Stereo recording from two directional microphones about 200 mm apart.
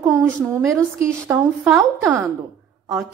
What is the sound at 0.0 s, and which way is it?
A woman's voice, 10° right (ahead or behind).